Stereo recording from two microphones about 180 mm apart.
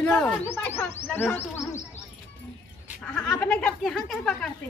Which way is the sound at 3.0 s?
5° left (ahead or behind).